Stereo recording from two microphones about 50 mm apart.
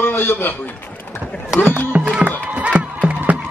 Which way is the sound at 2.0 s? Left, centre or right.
Right.